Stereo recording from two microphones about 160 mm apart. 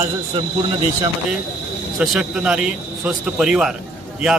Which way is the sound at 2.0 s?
5° right (ahead or behind).